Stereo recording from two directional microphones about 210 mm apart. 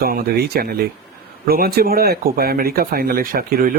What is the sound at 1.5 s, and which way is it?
Speech, 45° right (ahead or behind).